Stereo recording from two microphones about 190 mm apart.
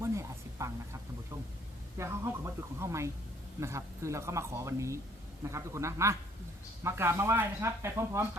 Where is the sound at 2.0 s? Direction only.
15° right (ahead or behind).